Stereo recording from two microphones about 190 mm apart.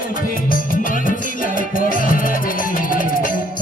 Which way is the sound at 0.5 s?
45° left (ahead or behind).